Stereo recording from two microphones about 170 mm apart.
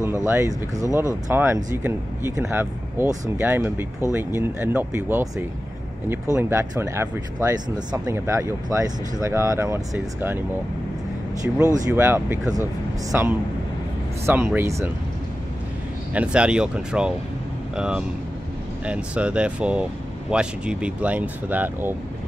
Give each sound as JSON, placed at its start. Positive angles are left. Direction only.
{"t": 0.2, "sound": "speech", "side_deg": -20}
{"t": 6.3, "sound": "speech", "side_deg": -15}
{"t": 11.4, "sound": "speech", "side_deg": -5}
{"t": 16.1, "sound": "speech", "side_deg": -5}